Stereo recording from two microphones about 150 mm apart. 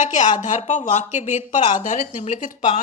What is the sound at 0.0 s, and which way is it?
A woman's voice, 55° left (ahead or behind).